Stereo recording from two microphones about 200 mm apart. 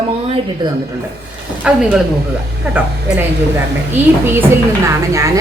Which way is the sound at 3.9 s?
10° right (ahead or behind).